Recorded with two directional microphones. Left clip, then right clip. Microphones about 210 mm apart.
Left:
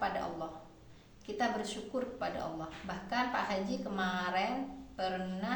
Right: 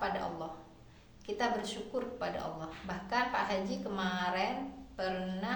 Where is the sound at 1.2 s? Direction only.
15° right (ahead or behind).